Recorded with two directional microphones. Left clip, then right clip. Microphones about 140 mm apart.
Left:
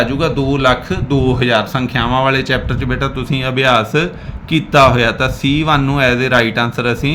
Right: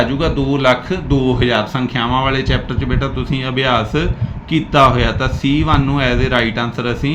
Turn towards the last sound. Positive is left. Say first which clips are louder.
# left 3 dB
turn(degrees=40)  # may be behind; listen again after turning